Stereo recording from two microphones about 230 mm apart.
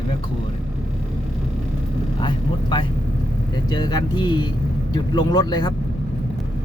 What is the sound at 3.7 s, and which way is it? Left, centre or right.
Speech, centre.